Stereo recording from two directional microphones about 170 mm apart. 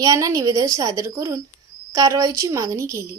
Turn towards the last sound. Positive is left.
turn(degrees=-15)  # may be behind; listen again after turning